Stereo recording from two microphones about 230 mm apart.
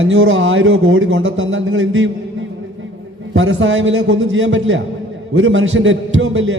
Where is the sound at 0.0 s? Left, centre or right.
Right.